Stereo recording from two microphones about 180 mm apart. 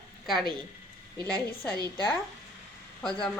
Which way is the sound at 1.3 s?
20° right (ahead or behind).